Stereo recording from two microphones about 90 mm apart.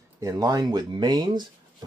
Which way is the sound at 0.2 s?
40° right (ahead or behind).